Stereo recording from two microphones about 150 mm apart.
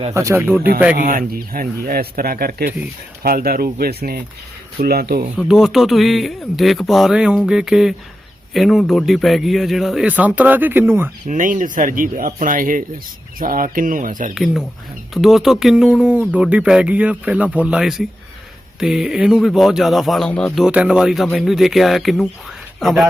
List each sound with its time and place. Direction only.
0.1 s speech: 20° right (ahead or behind)
0.9 s speech: 70° right (ahead or behind); by 5.2 s 90° right
5.4 s speech: centre (ahead or behind)
11.3 s speech: 60° right (ahead or behind)
14.3 s speech: centre (ahead or behind)
20.7 s speech: 5° right (ahead or behind)
22.4 s a sound: centre (ahead or behind)